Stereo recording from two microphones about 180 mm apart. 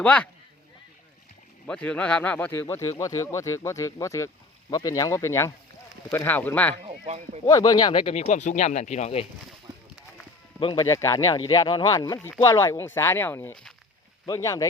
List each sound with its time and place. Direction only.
0.0 s speech: 5° left (ahead or behind)
1.6 s speech: 5° left (ahead or behind)
6.8 s speech: 35° right (ahead or behind)
7.4 s speech: 20° left (ahead or behind); by 9.2 s 35° left (ahead or behind)
10.6 s speech: 25° left (ahead or behind); by 13.7 s 5° left (ahead or behind)
14.3 s speech: 20° left (ahead or behind)